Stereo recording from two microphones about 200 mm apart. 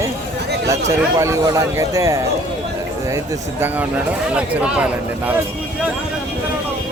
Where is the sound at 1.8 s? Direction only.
15° right (ahead or behind).